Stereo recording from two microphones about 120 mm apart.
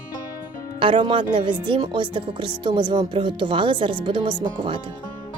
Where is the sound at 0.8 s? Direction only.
45° right (ahead or behind).